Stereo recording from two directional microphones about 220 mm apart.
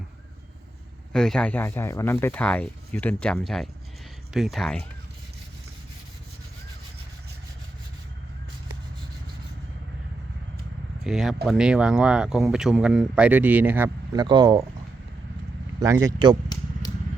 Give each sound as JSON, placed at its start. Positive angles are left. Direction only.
{"t": 1.1, "sound": "speech", "side_deg": 5}
{"t": 11.0, "sound": "speech", "side_deg": 0}
{"t": 15.8, "sound": "speech", "side_deg": -15}